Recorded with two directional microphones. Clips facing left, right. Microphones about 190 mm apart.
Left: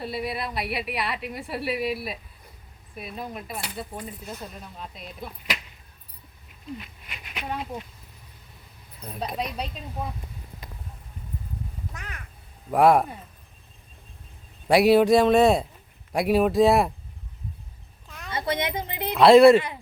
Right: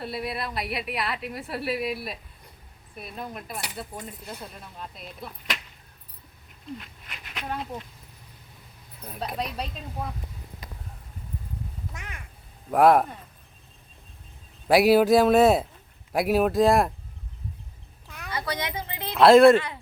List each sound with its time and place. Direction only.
0.0 s a woman's voice: centre (ahead or behind)
6.7 s a woman's voice: 5° left (ahead or behind)
9.0 s a woman's voice: 5° right (ahead or behind)
12.7 s a woman's voice: centre (ahead or behind)
14.7 s a woman's voice: centre (ahead or behind)
18.3 s a woman's voice: 25° left (ahead or behind)
19.2 s a woman's voice: centre (ahead or behind)
19.5 s speech: 15° left (ahead or behind)